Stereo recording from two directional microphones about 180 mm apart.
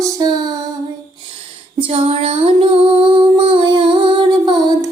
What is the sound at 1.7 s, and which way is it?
Child singing, 30° right (ahead or behind).